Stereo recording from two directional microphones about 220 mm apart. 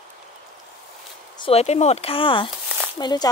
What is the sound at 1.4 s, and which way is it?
Speech, 30° left (ahead or behind).